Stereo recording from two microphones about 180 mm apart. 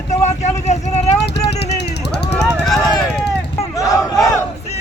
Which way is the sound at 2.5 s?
Centre (ahead or behind).